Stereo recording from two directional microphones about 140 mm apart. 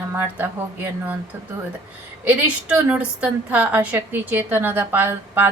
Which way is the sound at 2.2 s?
10° right (ahead or behind).